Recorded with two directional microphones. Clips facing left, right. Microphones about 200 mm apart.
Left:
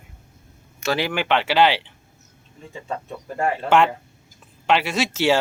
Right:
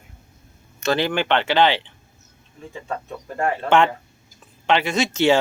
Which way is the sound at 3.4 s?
10° left (ahead or behind).